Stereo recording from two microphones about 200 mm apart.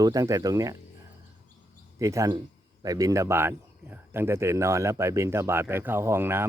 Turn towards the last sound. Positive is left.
turn(degrees=-10)  # may be behind; listen again after turning